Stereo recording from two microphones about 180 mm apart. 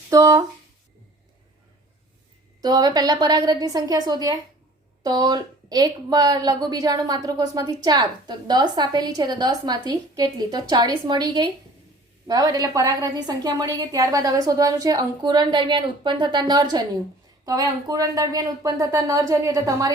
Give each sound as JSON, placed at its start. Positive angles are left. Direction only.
{"t": 0.1, "sound": "a woman's voice", "side_deg": -20}
{"t": 2.6, "sound": "a woman's voice", "side_deg": -20}